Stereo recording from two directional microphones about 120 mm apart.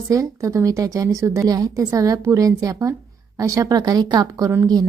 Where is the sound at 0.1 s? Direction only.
25° right (ahead or behind).